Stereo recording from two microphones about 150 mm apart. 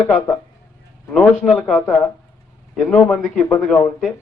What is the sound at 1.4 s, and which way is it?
A man's voice, 5° left (ahead or behind).